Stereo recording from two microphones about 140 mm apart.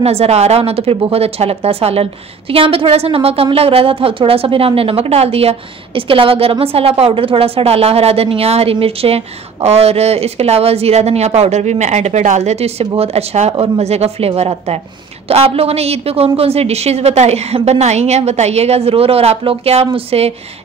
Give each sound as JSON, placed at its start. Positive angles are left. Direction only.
{"t": 0.0, "sound": "a woman's voice", "side_deg": -50}